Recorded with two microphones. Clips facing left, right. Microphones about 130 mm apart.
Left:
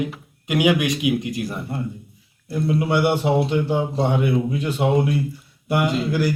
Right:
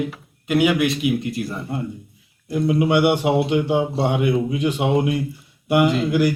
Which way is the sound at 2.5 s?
15° right (ahead or behind).